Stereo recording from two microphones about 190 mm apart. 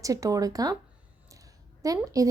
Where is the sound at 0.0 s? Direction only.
15° right (ahead or behind).